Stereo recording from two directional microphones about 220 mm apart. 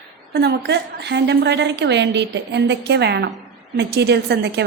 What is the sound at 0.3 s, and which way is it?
A woman's voice, 50° right (ahead or behind).